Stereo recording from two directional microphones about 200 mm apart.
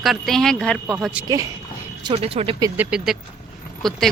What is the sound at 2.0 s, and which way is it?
Speech, 25° right (ahead or behind).